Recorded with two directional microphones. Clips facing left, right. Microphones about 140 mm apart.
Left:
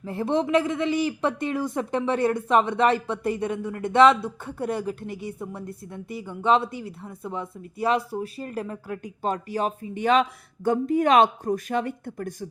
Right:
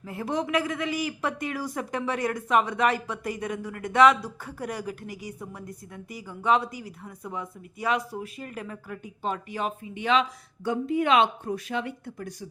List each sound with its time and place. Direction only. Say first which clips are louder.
0.0 s a man's voice: left 5 dB; 30° left (ahead or behind); by 12.5 s 50° left (ahead or behind)